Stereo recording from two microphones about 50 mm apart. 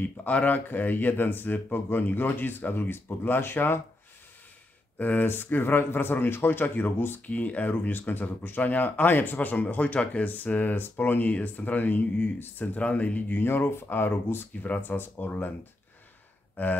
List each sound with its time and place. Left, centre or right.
0.0 s speech: left
4.9 s speech: left
7.2 s speech: left
12.7 s speech: left
13.4 s speech: left
14.6 s speech: left
16.6 s speech: left